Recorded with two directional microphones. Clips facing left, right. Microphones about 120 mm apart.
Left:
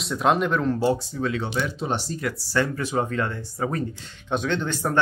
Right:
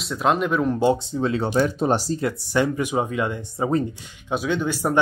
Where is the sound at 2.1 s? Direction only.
25° right (ahead or behind).